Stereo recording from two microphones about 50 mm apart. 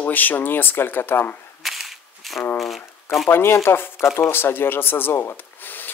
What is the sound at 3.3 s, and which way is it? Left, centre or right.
Speech, left.